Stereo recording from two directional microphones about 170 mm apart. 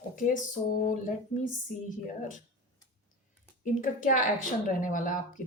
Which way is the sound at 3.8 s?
50° left (ahead or behind).